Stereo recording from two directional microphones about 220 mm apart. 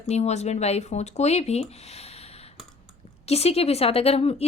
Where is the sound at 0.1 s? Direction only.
30° left (ahead or behind).